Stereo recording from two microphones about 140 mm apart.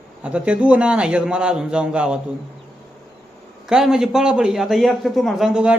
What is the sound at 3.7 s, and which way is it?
A man's voice, 5° right (ahead or behind).